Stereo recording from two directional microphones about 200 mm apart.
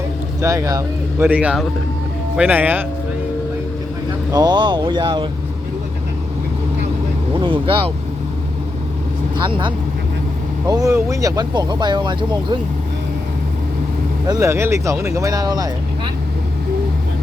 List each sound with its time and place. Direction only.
0.4 s speech: 15° right (ahead or behind)
4.3 s speech: 20° right (ahead or behind)
7.3 s speech: 25° right (ahead or behind)
9.5 s speech: 25° right (ahead or behind)
14.3 s speech: 15° right (ahead or behind)